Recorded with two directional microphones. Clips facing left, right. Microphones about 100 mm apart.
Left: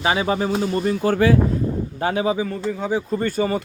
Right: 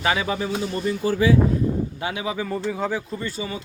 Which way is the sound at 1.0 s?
55° left (ahead or behind).